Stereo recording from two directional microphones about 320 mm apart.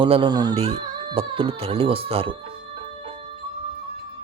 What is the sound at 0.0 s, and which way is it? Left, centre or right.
Speech, centre.